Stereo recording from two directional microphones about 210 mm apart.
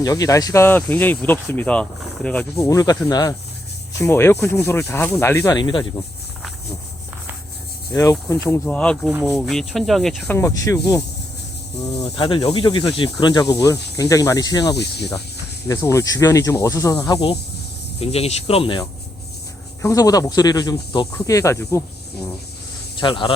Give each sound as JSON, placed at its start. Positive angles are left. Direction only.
{"t": 0.0, "sound": "speech", "side_deg": 15}
{"t": 8.1, "sound": "speech", "side_deg": 10}
{"t": 10.3, "sound": "speech", "side_deg": 15}
{"t": 14.8, "sound": "speech", "side_deg": 50}
{"t": 15.6, "sound": "speech", "side_deg": 15}
{"t": 23.0, "sound": "speech", "side_deg": 20}